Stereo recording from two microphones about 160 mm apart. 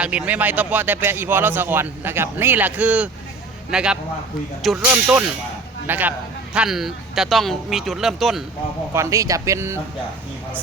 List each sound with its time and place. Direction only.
0.0 s a man's voice: 10° right (ahead or behind)
5.9 s a man's voice: 10° right (ahead or behind)
8.9 s speech: 20° right (ahead or behind)